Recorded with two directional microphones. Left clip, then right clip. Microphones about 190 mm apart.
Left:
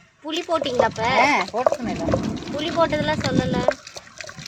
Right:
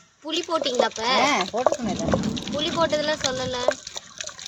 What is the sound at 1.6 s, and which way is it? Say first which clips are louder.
Speech: left 2 dB; 15° right (ahead or behind).